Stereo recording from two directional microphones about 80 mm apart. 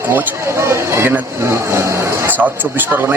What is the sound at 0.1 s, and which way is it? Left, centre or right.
Speech, right.